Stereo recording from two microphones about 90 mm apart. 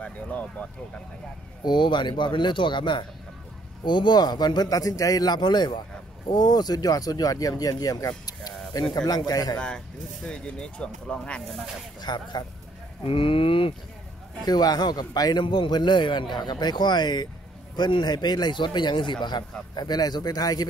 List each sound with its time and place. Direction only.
0.0 s speech: 15° left (ahead or behind)
1.6 s a man's voice: 60° left (ahead or behind); by 8.1 s 40° left (ahead or behind)
8.3 s a sound: 45° left (ahead or behind)
8.9 s a man's voice: 45° left (ahead or behind)
10.2 s speech: 10° left (ahead or behind)
12.0 s a man's voice: 55° left (ahead or behind)
13.0 s speech: 90° left
14.4 s a man's voice: 50° left (ahead or behind)
15.4 s a man's voice: 65° left (ahead or behind); by 20.6 s 45° left (ahead or behind)